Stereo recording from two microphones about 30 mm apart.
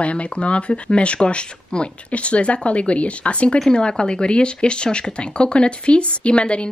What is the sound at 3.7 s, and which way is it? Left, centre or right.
Speech, left.